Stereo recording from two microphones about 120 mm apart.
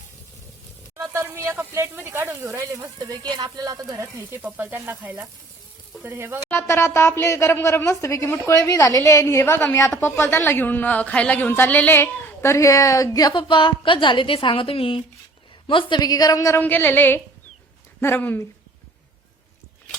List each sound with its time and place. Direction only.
0.9 s speech: 25° right (ahead or behind)
3.1 s speech: 35° right (ahead or behind)
6.5 s a woman's voice: 20° left (ahead or behind)
16.6 s a woman's voice: 15° left (ahead or behind)